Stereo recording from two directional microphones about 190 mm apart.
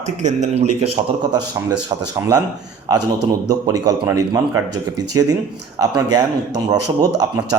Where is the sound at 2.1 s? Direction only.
15° right (ahead or behind).